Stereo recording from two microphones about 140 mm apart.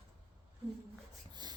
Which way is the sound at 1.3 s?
30° right (ahead or behind).